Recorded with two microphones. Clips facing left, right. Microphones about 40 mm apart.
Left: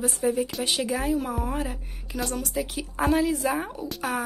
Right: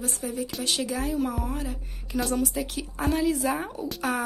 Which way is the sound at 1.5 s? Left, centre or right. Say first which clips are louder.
Left 3 dB; left.